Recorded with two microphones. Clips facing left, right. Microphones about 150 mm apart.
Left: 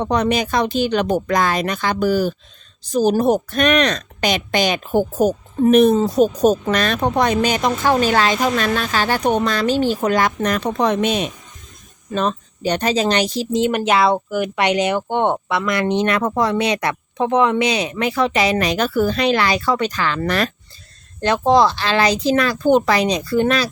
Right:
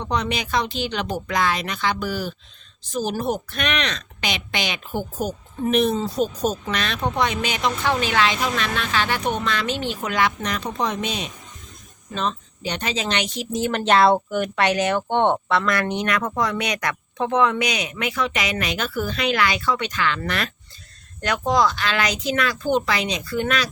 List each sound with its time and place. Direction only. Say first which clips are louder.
0.0 s a woman's voice: left 7 dB; 50° left (ahead or behind)
12.1 s speech: left 6 dB; 45° left (ahead or behind)
13.6 s speech: left 1 dB; 15° left (ahead or behind); by 20.5 s 40° left (ahead or behind)
21.2 s speech: left 6 dB; 30° left (ahead or behind)